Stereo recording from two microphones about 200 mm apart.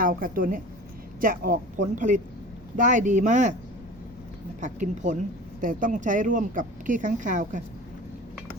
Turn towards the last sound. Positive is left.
turn(degrees=-40)  # may be behind; listen again after turning